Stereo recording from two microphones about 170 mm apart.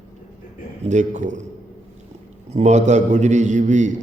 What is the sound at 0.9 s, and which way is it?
Speech, 45° right (ahead or behind).